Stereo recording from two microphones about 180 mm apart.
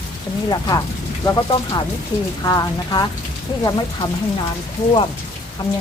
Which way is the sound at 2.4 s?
20° left (ahead or behind).